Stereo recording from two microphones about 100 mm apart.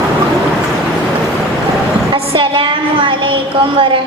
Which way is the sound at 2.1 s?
60° right (ahead or behind).